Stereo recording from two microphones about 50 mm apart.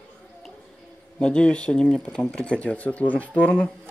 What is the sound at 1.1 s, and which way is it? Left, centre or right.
Speech, left.